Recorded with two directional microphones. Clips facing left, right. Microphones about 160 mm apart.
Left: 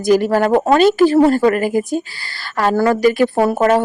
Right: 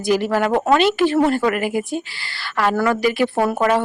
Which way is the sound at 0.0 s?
45° left (ahead or behind).